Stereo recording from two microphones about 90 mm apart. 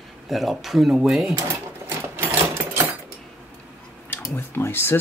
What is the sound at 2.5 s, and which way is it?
Sewing machine, 30° right (ahead or behind).